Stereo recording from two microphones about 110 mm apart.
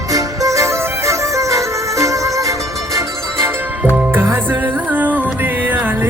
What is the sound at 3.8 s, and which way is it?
Music, 15° right (ahead or behind).